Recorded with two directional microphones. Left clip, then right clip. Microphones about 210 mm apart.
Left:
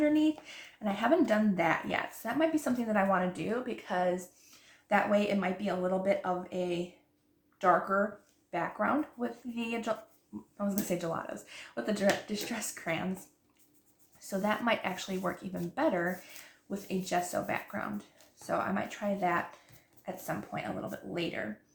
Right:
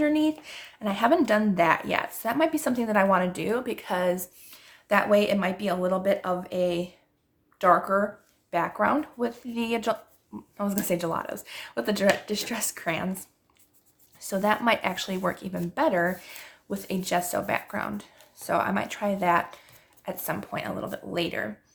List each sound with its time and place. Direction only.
0.0 s speech: 45° right (ahead or behind)
14.2 s speech: 40° right (ahead or behind)